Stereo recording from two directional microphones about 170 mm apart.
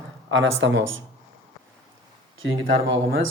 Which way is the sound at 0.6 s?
90° right.